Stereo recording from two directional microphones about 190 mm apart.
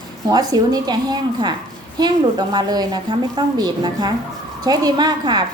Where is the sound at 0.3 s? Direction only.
20° right (ahead or behind).